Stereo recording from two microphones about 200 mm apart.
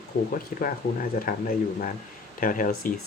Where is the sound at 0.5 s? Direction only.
45° left (ahead or behind).